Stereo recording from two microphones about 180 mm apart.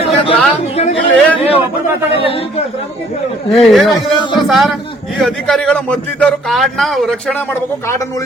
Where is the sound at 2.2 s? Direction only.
30° left (ahead or behind).